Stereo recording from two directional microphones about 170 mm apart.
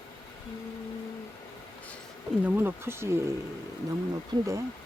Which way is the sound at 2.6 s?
15° right (ahead or behind).